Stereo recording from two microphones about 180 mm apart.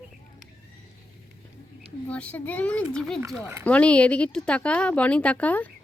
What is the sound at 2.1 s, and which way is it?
Speech, 10° left (ahead or behind).